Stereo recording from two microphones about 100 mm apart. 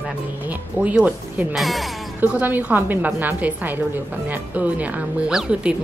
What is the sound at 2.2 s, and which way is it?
A woman's voice, 15° right (ahead or behind).